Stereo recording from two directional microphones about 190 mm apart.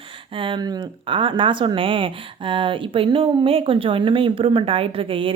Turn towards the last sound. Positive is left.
turn(degrees=-30)  # may be behind; listen again after turning